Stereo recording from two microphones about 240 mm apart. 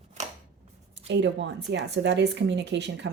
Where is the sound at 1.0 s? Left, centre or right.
Right.